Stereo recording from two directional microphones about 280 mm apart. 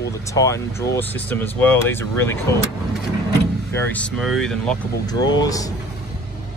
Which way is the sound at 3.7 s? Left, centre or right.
Centre.